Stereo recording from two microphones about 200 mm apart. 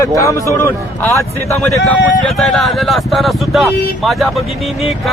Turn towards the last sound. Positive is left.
turn(degrees=0)  # may be behind; listen again after turning